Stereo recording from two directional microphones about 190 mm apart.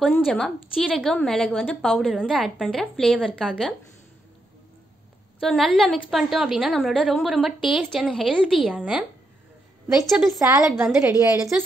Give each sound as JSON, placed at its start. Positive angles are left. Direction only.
{"t": 0.0, "sound": "a woman's voice", "side_deg": 5}
{"t": 5.4, "sound": "a woman's voice", "side_deg": 0}
{"t": 10.0, "sound": "a woman's voice", "side_deg": 0}
{"t": 10.4, "sound": "a woman's voice", "side_deg": -15}